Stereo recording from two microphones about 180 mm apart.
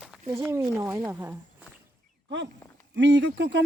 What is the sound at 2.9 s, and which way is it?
Speech, 80° right.